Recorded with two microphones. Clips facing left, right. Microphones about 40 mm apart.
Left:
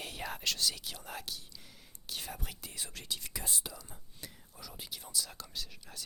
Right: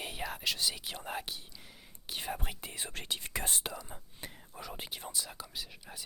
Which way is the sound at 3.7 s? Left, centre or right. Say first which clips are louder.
Right 6 dB; right.